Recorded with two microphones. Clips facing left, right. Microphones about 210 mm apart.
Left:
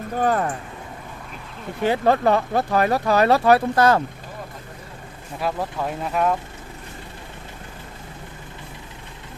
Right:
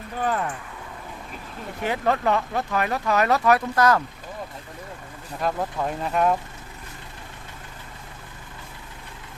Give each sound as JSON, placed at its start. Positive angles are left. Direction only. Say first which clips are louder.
{"t": 0.2, "sound": "speech", "louder": "left 5 dB", "side_deg": 45}
{"t": 1.8, "sound": "speech", "louder": "left 5 dB", "side_deg": 30}
{"t": 5.4, "sound": "speech", "louder": "even", "side_deg": 5}